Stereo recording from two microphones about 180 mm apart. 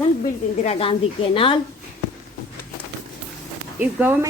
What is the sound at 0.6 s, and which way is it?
Speech, 35° left (ahead or behind).